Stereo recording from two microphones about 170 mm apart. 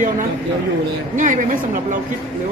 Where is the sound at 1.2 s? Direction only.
50° right (ahead or behind).